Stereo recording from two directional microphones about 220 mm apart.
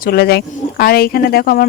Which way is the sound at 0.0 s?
45° left (ahead or behind).